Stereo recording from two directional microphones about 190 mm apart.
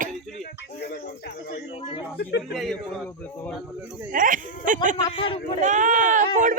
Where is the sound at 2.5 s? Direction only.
Centre (ahead or behind).